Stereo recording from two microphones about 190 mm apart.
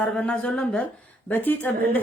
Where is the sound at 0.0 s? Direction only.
5° left (ahead or behind).